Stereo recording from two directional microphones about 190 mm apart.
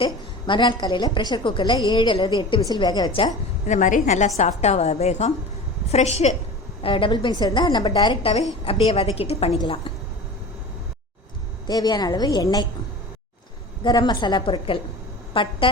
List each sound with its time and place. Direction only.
0.0 s a woman's voice: 25° left (ahead or behind)
3.8 s a woman's voice: 40° left (ahead or behind)
11.7 s a woman's voice: 20° left (ahead or behind)
13.8 s a woman's voice: 20° left (ahead or behind)